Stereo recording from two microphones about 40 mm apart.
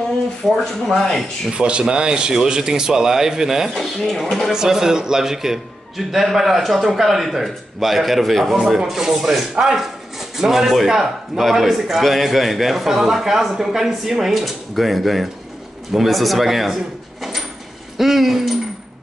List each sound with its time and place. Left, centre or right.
0.6 s speech: centre
1.5 s speech: right
3.7 s speech: centre
4.5 s speech: centre
17.2 s sliding door: centre
17.9 s a sound: centre